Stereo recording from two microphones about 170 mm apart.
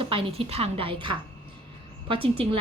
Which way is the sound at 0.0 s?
30° right (ahead or behind).